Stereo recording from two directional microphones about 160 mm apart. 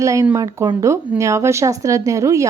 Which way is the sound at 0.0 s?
20° right (ahead or behind).